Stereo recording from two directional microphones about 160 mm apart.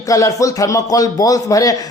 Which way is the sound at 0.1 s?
20° left (ahead or behind).